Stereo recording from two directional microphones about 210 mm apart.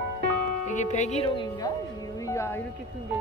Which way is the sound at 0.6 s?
35° left (ahead or behind).